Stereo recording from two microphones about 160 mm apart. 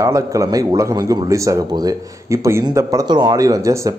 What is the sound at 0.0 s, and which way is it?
A man's voice, 20° right (ahead or behind).